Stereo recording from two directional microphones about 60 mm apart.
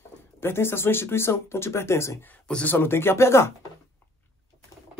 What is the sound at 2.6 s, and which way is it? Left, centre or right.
Speech, left.